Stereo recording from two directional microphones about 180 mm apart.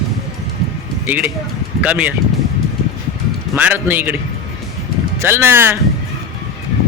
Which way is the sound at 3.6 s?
10° right (ahead or behind).